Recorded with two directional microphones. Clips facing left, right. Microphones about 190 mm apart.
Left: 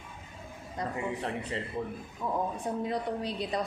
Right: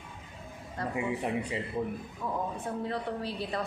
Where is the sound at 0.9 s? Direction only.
10° right (ahead or behind).